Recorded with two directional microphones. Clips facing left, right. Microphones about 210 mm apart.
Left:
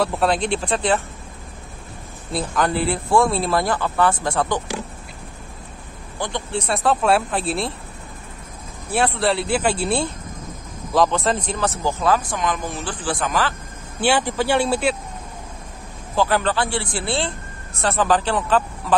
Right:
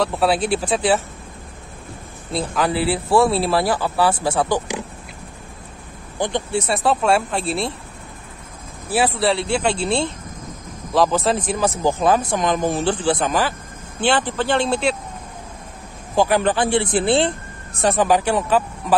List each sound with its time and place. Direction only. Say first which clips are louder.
0.0 s speech: right 1 dB; centre (ahead or behind)
2.3 s speech: right 1 dB; 5° right (ahead or behind)
6.1 s speech: right 4 dB; 20° right (ahead or behind)
6.7 s speech: even; centre (ahead or behind)
8.9 s speech: right 1 dB; centre (ahead or behind)
10.9 s speech: right 1 dB; centre (ahead or behind)
12.4 s speech: right 5 dB; 35° right (ahead or behind); by 13.6 s 15° right (ahead or behind)
14.0 s speech: even; 10° left (ahead or behind)
16.2 s speech: right 3 dB; 15° right (ahead or behind)